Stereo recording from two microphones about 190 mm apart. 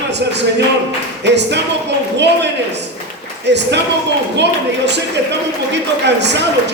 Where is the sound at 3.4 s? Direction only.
65° right (ahead or behind).